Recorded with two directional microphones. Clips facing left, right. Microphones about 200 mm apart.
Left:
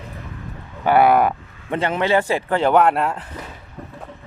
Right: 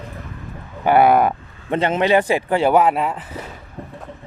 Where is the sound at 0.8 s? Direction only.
20° right (ahead or behind); by 3.2 s centre (ahead or behind).